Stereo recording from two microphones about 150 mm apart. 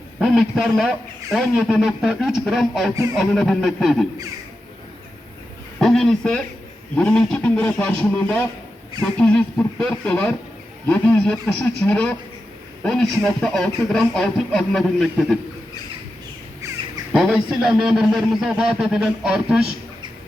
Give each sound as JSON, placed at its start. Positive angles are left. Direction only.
{"t": 0.2, "sound": "a man's voice", "side_deg": 0}
{"t": 2.9, "sound": "speech", "side_deg": -20}
{"t": 3.2, "sound": "a man's voice", "side_deg": 0}
{"t": 5.8, "sound": "a man's voice", "side_deg": 0}
{"t": 17.1, "sound": "a man's voice", "side_deg": -5}